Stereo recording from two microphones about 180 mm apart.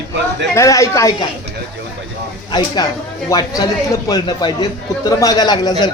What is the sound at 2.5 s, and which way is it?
A man's voice, 25° left (ahead or behind).